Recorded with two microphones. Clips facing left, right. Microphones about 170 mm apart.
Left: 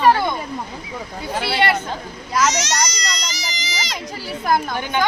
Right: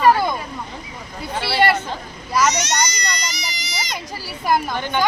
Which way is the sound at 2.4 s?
90° left.